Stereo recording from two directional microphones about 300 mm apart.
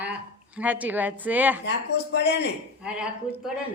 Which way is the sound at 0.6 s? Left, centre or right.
Centre.